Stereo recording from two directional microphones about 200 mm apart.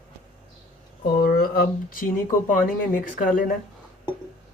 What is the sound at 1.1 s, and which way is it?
Speech, 50° left (ahead or behind).